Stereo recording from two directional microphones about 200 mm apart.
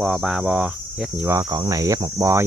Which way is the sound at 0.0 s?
Centre (ahead or behind).